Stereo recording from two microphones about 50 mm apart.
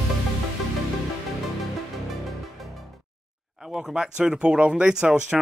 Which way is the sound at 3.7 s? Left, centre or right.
Centre.